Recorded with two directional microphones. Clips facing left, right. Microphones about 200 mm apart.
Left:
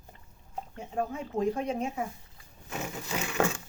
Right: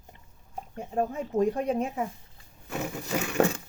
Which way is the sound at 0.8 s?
40° right (ahead or behind).